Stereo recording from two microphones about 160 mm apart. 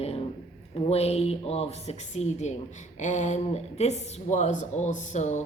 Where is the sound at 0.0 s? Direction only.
40° left (ahead or behind).